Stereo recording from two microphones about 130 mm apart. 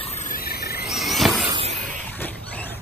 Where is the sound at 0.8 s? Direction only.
Centre (ahead or behind).